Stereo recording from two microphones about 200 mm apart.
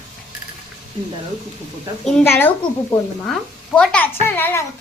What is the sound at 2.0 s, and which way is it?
Speech, 10° left (ahead or behind).